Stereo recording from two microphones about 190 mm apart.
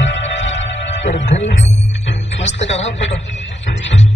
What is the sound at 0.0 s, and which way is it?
Music, 75° left (ahead or behind).